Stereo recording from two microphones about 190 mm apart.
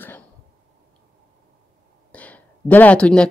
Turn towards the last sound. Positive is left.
turn(degrees=5)  # may be behind; listen again after turning